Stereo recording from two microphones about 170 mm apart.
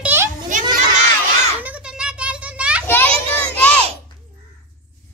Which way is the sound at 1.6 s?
5° right (ahead or behind).